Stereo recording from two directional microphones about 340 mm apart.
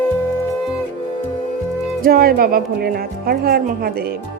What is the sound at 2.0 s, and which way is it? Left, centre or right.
Speech, right.